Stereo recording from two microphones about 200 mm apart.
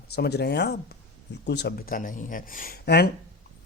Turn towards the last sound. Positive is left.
turn(degrees=55)  # may be behind; listen again after turning